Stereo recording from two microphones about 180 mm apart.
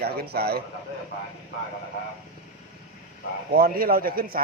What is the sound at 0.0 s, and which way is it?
Speech, 60° right (ahead or behind).